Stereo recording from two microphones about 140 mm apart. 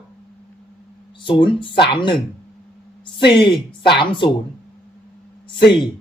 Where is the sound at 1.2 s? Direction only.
35° left (ahead or behind).